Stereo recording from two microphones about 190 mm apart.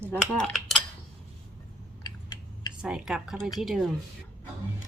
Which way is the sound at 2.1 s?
20° left (ahead or behind).